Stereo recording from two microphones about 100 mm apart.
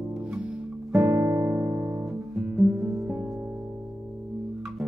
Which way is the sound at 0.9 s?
10° right (ahead or behind).